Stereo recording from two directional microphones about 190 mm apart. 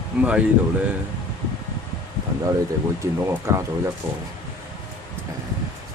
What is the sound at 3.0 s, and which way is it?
Speech, 15° right (ahead or behind).